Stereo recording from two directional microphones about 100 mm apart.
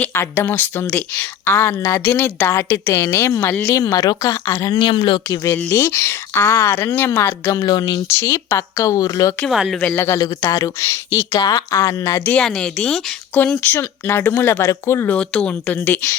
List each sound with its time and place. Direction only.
0.0 s speech: 25° left (ahead or behind)
4.7 s speech: 55° left (ahead or behind)
5.6 s speech: 20° left (ahead or behind)
7.5 s speech: 40° left (ahead or behind)
8.0 s speech: 30° left (ahead or behind)
9.5 s speech: centre (ahead or behind)
9.8 s speech: 20° left (ahead or behind)
10.4 s speech: 30° left (ahead or behind)
12.2 s speech: 10° left (ahead or behind); by 15.1 s 25° left (ahead or behind)
15.1 s speech: 10° left (ahead or behind)